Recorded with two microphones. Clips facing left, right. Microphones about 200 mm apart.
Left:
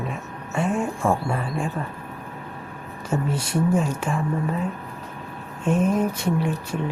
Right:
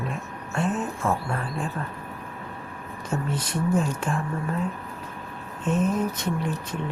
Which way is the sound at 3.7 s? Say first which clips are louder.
Left 2 dB; 5° left (ahead or behind).